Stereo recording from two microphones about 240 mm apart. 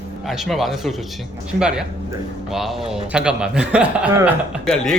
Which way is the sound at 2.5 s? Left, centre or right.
Centre.